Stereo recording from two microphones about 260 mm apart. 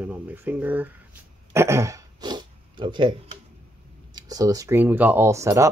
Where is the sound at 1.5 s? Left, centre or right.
Centre.